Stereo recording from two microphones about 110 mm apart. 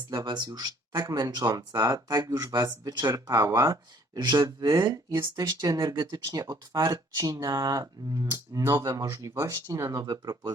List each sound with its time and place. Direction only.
0.1 s speech: 40° right (ahead or behind)